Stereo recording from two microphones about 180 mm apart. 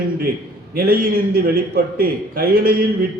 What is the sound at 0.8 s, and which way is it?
A man's voice, 55° right (ahead or behind).